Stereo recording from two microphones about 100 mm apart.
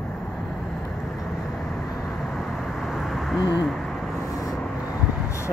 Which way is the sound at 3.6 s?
Centre (ahead or behind).